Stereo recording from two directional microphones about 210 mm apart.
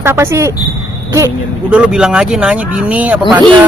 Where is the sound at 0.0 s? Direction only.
10° right (ahead or behind).